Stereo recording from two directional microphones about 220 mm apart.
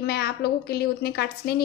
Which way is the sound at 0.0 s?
45° left (ahead or behind).